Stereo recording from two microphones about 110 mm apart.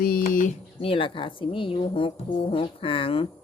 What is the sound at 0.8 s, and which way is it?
Speech, 55° left (ahead or behind).